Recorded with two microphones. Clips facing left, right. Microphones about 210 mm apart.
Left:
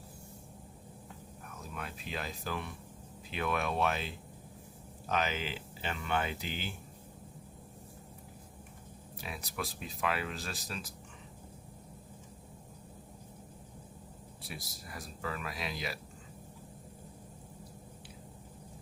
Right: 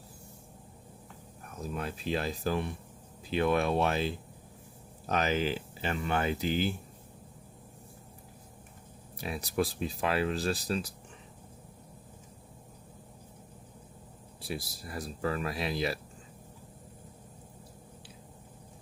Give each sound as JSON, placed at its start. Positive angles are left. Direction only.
{"t": 1.7, "sound": "speech", "side_deg": -35}
{"t": 9.2, "sound": "speech", "side_deg": -35}
{"t": 14.4, "sound": "speech", "side_deg": -35}